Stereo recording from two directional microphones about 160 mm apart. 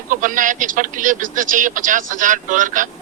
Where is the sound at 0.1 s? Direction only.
55° right (ahead or behind).